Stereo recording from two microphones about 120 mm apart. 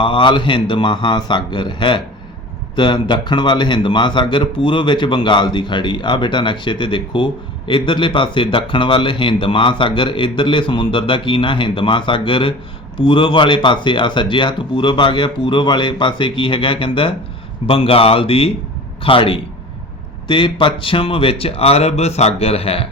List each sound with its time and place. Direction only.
0.0 s speech: 40° left (ahead or behind)